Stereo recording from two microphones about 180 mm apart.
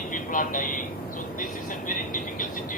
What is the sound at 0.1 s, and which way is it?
Speech, 45° left (ahead or behind).